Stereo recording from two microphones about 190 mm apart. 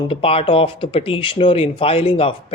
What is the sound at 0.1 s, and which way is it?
Speech, 30° left (ahead or behind).